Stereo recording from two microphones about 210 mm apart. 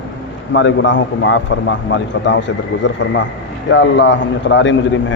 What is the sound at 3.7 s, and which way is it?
A man's voice, 55° left (ahead or behind).